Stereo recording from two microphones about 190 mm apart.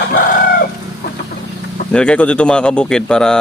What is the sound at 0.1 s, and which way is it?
Chicken, 45° left (ahead or behind).